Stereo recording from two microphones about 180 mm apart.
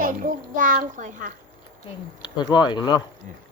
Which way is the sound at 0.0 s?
50° right (ahead or behind).